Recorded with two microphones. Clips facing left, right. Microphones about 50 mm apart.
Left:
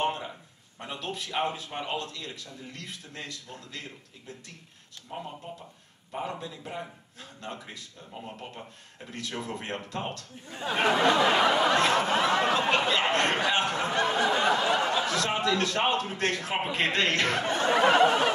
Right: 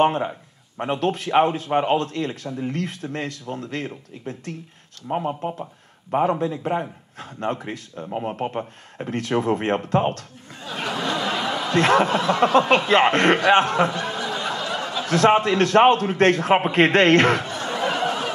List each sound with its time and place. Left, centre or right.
0.0 s a man's voice: right
10.5 s a sound: left
11.7 s a man's voice: right
13.8 s snicker: left
15.0 s a man's voice: right
17.4 s a sound: left